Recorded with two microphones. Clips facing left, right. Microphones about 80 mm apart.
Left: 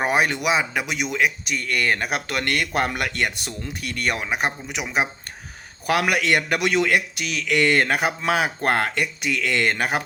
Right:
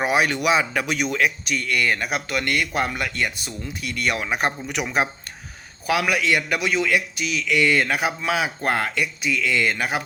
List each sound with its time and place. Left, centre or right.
0.0 s a sound: left
0.3 s speech: left
1.5 s a man's voice: left
4.2 s a man's voice: centre
5.8 s a man's voice: left